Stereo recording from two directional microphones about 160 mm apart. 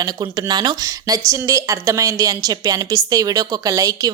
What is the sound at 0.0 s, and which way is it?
A woman's voice, 25° right (ahead or behind).